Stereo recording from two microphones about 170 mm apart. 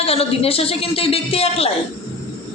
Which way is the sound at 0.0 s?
35° left (ahead or behind).